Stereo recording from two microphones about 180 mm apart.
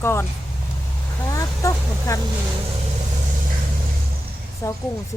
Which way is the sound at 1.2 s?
20° left (ahead or behind).